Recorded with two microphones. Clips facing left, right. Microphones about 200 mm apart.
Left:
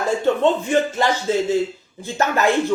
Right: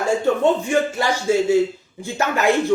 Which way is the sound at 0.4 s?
15° right (ahead or behind).